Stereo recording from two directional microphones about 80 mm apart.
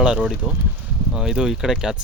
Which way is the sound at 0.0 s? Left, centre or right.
Centre.